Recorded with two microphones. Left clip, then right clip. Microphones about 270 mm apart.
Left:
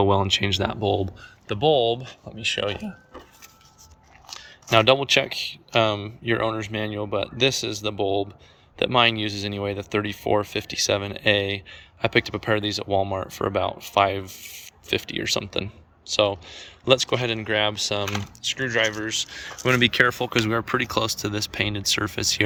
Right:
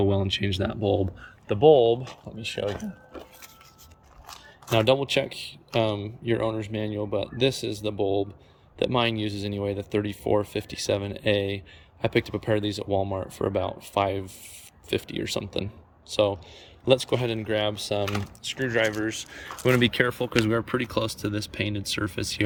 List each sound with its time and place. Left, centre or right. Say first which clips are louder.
0.0 s speech: left 5 dB; centre
4.3 s speech: left 6 dB; centre